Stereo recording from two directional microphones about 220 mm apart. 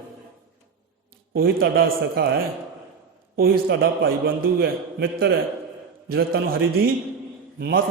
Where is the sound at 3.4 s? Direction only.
45° right (ahead or behind).